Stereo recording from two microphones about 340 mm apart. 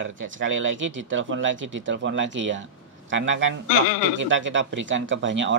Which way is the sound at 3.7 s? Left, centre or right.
Left.